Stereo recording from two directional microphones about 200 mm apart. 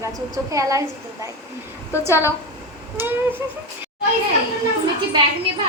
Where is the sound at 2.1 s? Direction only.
15° left (ahead or behind).